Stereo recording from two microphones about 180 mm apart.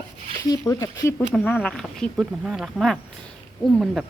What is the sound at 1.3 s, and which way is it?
Speech, 5° left (ahead or behind).